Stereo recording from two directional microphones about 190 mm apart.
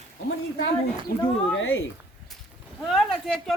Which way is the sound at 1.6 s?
90° left.